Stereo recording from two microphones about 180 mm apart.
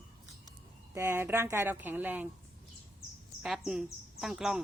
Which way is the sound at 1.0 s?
15° right (ahead or behind).